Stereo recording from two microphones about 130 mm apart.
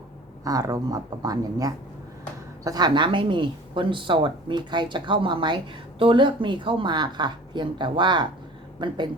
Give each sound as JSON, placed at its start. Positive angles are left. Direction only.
{"t": 0.4, "sound": "speech", "side_deg": -25}